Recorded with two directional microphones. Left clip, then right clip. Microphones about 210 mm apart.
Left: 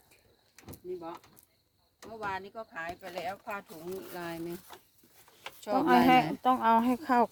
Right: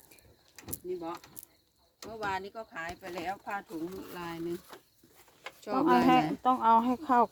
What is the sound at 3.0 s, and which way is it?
Speech, 15° left (ahead or behind).